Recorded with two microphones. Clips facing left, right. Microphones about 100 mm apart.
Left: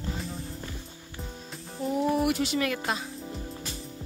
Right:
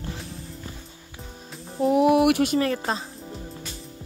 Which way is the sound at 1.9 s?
75° right (ahead or behind).